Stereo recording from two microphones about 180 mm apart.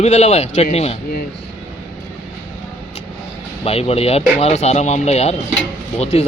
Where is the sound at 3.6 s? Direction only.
35° left (ahead or behind).